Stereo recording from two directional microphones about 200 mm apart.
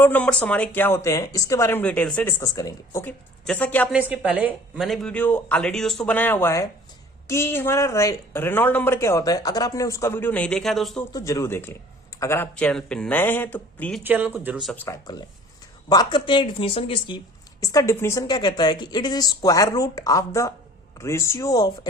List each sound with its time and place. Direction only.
0.0 s speech: 5° left (ahead or behind)
4.1 s speech: 5° right (ahead or behind)
11.1 s speech: 15° left (ahead or behind)
14.0 s speech: 10° right (ahead or behind)
14.8 s a woman's voice: 20° left (ahead or behind)